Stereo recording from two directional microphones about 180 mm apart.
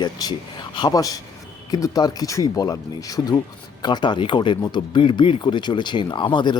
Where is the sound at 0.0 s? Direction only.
25° left (ahead or behind).